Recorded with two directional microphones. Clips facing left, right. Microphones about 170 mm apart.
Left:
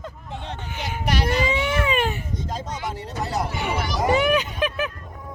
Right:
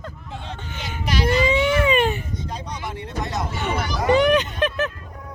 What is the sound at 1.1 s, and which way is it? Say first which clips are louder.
Baby cry: even; 65° left (ahead or behind).